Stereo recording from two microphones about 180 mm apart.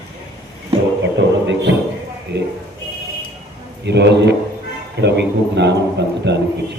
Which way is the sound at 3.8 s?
70° right (ahead or behind).